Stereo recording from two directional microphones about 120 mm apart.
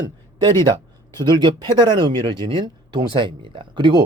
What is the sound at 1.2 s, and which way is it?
Speech, 40° right (ahead or behind).